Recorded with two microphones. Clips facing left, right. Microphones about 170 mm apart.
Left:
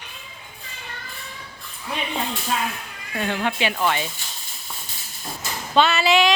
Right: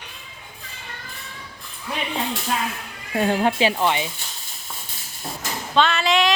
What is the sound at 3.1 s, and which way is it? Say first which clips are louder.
Speech: right 5 dB; 35° right (ahead or behind).